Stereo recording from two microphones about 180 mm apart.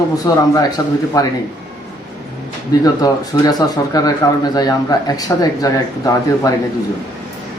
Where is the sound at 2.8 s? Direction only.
20° left (ahead or behind).